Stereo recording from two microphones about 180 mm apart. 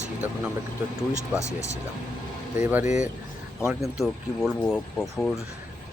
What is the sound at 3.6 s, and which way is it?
Speech, centre (ahead or behind).